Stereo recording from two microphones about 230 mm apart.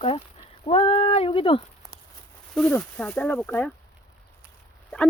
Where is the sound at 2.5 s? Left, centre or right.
Centre.